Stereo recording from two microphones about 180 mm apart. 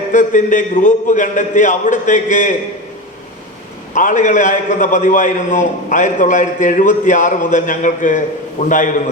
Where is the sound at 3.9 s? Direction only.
45° left (ahead or behind).